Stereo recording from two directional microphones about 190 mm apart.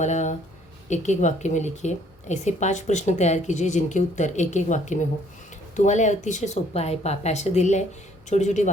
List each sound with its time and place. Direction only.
0.0 s a woman's voice: 40° left (ahead or behind)